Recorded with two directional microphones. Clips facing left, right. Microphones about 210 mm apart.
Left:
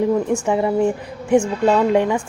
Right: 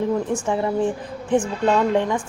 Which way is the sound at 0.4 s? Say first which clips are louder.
Left 4 dB; 15° left (ahead or behind).